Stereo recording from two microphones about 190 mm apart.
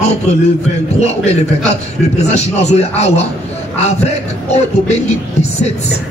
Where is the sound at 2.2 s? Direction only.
35° left (ahead or behind).